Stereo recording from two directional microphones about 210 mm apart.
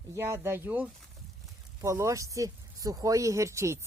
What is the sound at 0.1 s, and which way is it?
Speech, 10° right (ahead or behind).